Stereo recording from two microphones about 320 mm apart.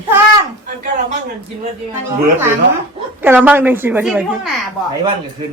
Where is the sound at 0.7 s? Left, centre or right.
Right.